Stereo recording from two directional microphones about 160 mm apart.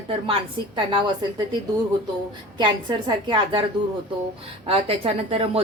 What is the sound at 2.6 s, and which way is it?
A woman's voice, 30° right (ahead or behind).